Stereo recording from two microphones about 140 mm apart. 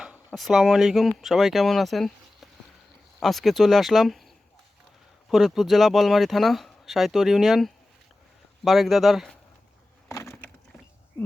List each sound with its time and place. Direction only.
0.3 s speech: centre (ahead or behind)
5.3 s speech: centre (ahead or behind)
10.1 s wood: 20° left (ahead or behind)